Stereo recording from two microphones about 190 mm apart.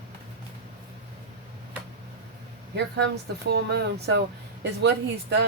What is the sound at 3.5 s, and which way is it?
Speech, 60° right (ahead or behind).